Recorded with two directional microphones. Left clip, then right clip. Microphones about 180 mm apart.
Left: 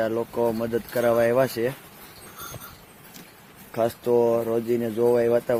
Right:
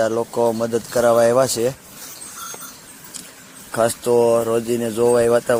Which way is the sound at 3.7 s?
20° right (ahead or behind).